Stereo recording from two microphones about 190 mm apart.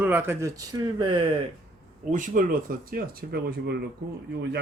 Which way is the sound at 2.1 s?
45° right (ahead or behind).